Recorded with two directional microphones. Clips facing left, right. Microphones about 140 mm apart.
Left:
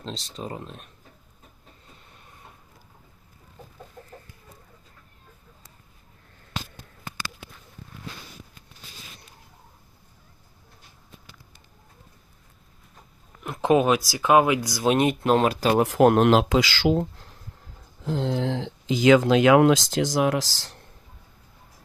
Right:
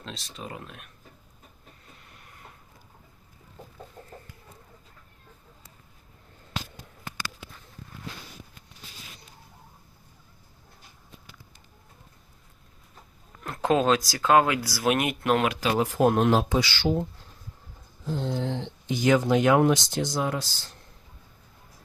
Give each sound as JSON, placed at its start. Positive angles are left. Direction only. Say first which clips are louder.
{"t": 0.0, "sound": "speech", "louder": "left 5 dB", "side_deg": 30}
{"t": 13.4, "sound": "speech", "louder": "left 3 dB", "side_deg": 15}
{"t": 15.8, "sound": "speech", "louder": "left 4 dB", "side_deg": 80}